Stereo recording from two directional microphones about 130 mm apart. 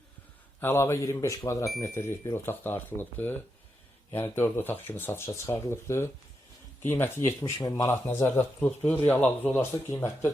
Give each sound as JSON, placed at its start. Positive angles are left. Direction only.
{"t": 0.6, "sound": "speech", "side_deg": 20}
{"t": 8.0, "sound": "speech", "side_deg": 15}